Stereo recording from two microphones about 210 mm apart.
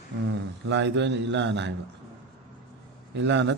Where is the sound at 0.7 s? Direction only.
55° right (ahead or behind).